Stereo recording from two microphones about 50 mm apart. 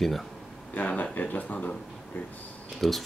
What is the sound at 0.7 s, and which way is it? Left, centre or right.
Speech, left.